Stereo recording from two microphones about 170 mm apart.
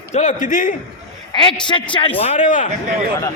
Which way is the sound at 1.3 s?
25° left (ahead or behind).